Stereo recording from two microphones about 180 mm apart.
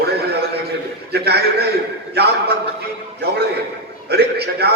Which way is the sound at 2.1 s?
65° right (ahead or behind).